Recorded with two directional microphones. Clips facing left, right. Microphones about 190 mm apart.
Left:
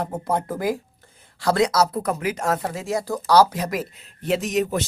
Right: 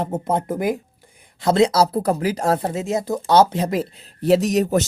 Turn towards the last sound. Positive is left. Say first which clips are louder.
# right 6 dB
turn(degrees=-40)  # may be behind; listen again after turning